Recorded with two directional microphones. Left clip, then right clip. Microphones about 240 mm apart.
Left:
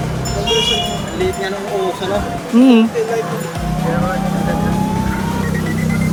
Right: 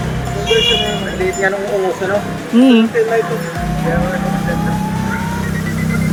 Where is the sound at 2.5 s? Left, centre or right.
Centre.